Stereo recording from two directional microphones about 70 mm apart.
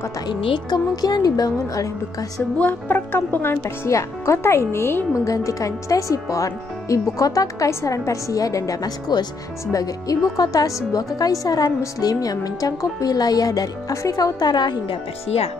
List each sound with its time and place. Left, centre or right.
0.3 s speech: left
2.6 s speech: left
3.6 s speech: left
5.2 s speech: left